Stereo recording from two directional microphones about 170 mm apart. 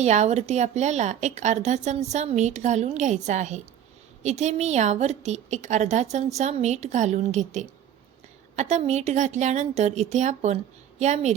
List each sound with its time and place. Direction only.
0.0 s a woman's voice: 40° right (ahead or behind)